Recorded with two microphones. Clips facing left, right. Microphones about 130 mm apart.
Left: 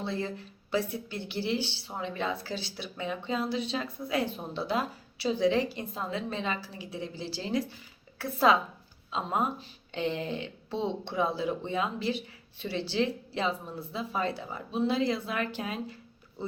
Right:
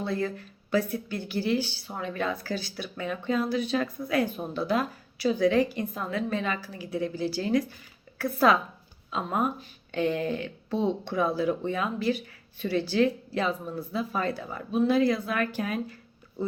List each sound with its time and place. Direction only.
0.0 s speech: 25° left (ahead or behind)